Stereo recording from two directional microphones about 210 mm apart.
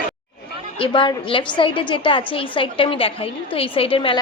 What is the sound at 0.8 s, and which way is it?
A woman's voice, 25° left (ahead or behind).